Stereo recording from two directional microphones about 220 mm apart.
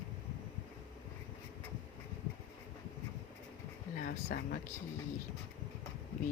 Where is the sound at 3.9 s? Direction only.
40° left (ahead or behind).